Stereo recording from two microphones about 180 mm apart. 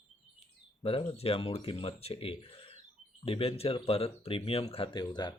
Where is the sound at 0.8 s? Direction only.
30° left (ahead or behind).